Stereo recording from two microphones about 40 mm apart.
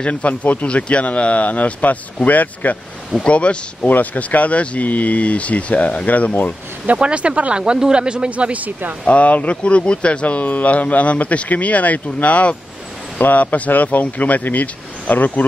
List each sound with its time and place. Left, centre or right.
0.0 s speech: left
3.3 s speech: left
3.8 s speech: left
7.0 s speech: right
8.3 s speech: right
9.0 s speech: left